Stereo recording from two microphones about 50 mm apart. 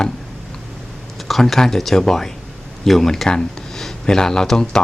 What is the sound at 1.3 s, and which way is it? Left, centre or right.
Speech, centre.